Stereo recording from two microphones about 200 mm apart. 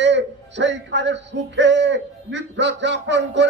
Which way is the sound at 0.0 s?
65° right (ahead or behind).